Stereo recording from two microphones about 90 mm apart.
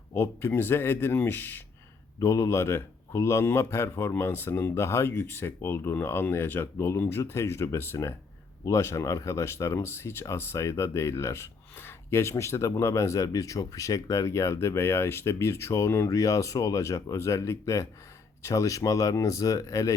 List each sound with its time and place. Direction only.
0.1 s speech: 30° left (ahead or behind)
2.1 s speech: 35° left (ahead or behind)